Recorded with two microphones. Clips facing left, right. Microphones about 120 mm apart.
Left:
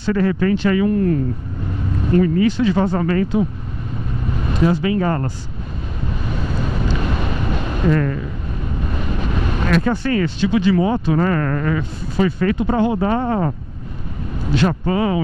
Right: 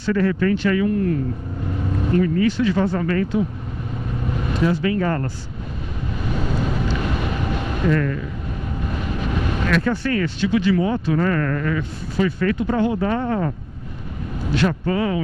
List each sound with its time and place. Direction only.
0.0 s speech: 25° left (ahead or behind)
2.1 s speech: 25° left (ahead or behind)
4.6 s speech: 20° left (ahead or behind)
7.9 s speech: 30° left (ahead or behind)
9.7 s speech: 25° left (ahead or behind)